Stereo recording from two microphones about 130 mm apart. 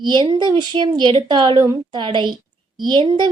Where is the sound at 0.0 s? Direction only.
35° right (ahead or behind).